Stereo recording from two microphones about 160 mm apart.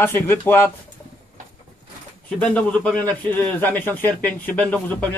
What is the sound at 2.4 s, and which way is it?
A man's voice, 5° left (ahead or behind).